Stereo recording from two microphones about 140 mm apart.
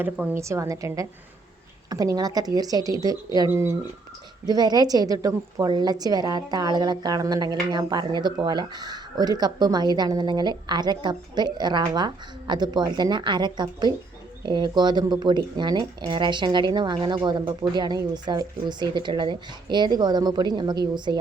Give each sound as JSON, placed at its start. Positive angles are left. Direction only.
{"t": 0.0, "sound": "a woman's voice", "side_deg": -15}
{"t": 4.4, "sound": "a woman's voice", "side_deg": -30}